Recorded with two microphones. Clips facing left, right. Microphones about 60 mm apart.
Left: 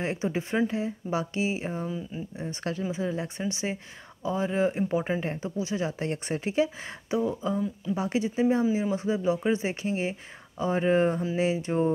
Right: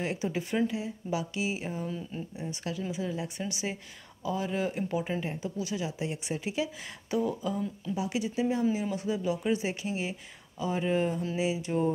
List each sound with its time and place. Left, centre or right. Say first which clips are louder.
0.0 s speech: left 3 dB; left
1.9 s speech: left 2 dB; centre
2.3 s speech: left 4 dB; left
5.9 s speech: left 4 dB; left